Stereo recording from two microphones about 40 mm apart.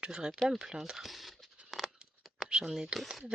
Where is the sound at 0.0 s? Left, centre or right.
Right.